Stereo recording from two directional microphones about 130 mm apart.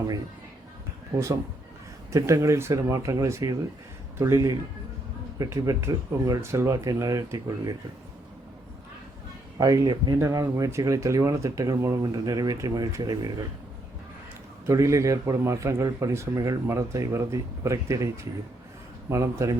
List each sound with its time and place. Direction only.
2.1 s speech: 25° right (ahead or behind)
9.6 s speech: 25° right (ahead or behind)
10.2 s speech: 20° right (ahead or behind)
14.7 s speech: 25° right (ahead or behind)